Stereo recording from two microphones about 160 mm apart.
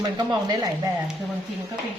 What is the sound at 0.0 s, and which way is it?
Speech, 25° right (ahead or behind).